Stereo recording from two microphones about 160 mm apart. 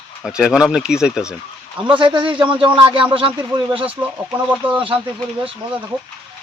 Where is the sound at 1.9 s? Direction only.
30° right (ahead or behind).